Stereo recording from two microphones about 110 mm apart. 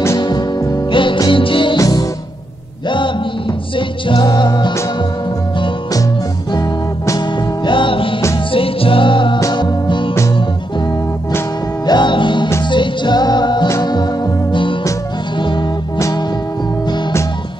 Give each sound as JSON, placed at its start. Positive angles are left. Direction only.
{"t": 0.2, "sound": "music", "side_deg": 35}
{"t": 0.9, "sound": "music", "side_deg": 50}
{"t": 1.8, "sound": "music", "side_deg": 30}
{"t": 3.7, "sound": "music", "side_deg": 45}
{"t": 7.6, "sound": "music", "side_deg": 50}
{"t": 11.8, "sound": "music", "side_deg": 40}